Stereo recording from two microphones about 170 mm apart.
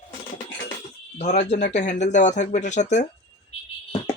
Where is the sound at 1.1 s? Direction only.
40° left (ahead or behind).